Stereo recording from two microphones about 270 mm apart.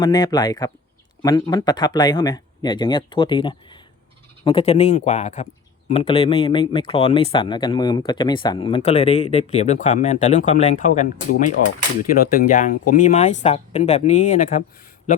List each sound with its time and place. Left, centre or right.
0.0 s speech: centre